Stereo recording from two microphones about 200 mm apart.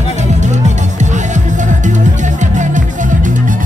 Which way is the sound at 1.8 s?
40° right (ahead or behind).